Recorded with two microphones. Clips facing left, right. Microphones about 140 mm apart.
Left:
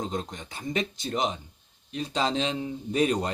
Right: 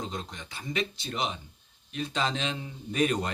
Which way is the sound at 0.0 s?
45° left (ahead or behind).